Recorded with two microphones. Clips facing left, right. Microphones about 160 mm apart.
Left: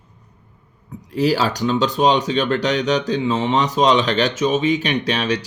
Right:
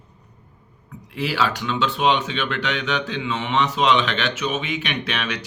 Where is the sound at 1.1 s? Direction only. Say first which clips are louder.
Left 5 dB; 40° left (ahead or behind).